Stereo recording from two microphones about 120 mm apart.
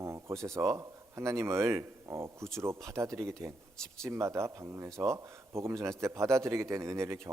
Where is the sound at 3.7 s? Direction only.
5° left (ahead or behind).